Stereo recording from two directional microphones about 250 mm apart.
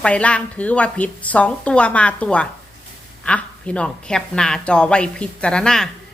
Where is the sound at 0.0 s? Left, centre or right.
Centre.